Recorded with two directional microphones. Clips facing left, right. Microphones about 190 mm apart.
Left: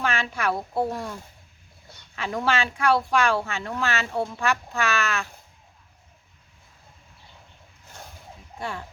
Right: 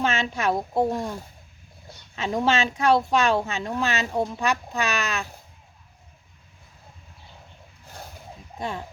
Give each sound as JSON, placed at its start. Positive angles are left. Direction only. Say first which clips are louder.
{"t": 0.0, "sound": "speech", "louder": "right 2 dB", "side_deg": -25}
{"t": 2.1, "sound": "speech", "louder": "right 3 dB", "side_deg": -20}
{"t": 8.5, "sound": "speech", "louder": "right 2 dB", "side_deg": -20}